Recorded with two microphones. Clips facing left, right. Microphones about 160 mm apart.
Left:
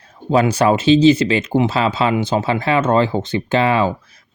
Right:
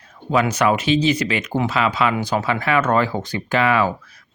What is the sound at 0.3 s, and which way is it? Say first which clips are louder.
Speech: left 4 dB; 30° left (ahead or behind).